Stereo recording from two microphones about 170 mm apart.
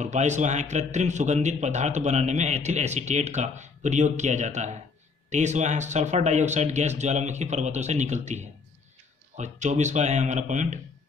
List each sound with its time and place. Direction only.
0.0 s a man's voice: 45° right (ahead or behind)